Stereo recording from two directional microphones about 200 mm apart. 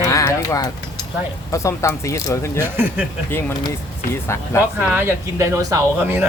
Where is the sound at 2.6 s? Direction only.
10° right (ahead or behind).